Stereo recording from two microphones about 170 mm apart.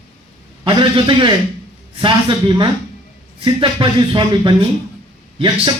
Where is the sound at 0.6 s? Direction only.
30° right (ahead or behind).